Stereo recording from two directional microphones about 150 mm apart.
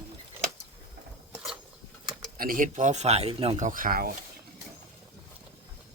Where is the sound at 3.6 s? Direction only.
65° right (ahead or behind).